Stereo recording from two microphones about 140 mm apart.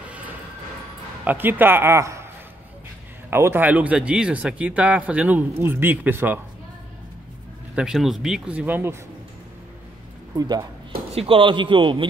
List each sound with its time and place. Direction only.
1.2 s speech: 15° right (ahead or behind)
3.3 s speech: 15° right (ahead or behind)
7.7 s speech: 5° right (ahead or behind)
10.3 s speech: 30° right (ahead or behind)
11.1 s a man's voice: 40° right (ahead or behind)